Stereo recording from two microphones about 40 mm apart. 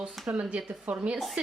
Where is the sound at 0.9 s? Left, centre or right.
Right.